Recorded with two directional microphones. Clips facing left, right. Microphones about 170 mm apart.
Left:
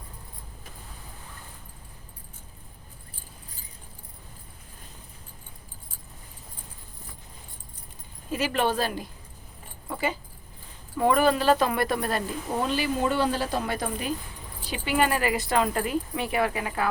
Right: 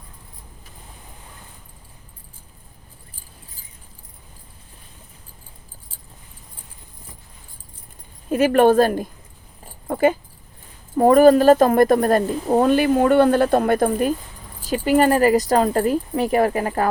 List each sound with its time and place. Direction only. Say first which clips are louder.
8.3 s speech: right 11 dB; 50° right (ahead or behind)
9.8 s dog: right 12 dB; 50° right (ahead or behind)
10.9 s speech: right 10 dB; 45° right (ahead or behind)